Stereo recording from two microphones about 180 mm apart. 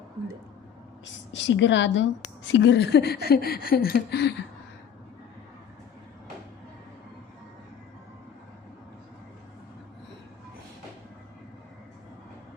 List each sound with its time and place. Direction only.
1.0 s a woman's voice: 90° left; by 4.4 s 65° left (ahead or behind)